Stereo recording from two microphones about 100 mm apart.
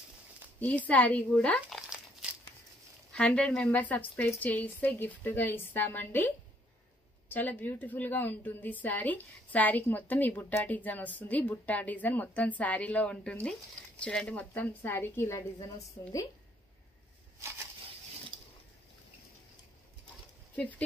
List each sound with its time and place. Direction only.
0.6 s a woman's voice: 15° left (ahead or behind)
1.7 s crumpling: centre (ahead or behind)
3.1 s a woman's voice: 10° left (ahead or behind); by 15.4 s 25° left (ahead or behind)
15.6 s a woman's voice: 35° left (ahead or behind)